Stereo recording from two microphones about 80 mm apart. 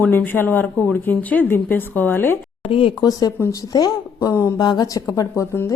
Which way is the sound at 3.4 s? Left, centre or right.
Left.